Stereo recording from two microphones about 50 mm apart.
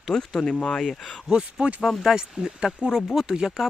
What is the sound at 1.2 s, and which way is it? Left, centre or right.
Speech, centre.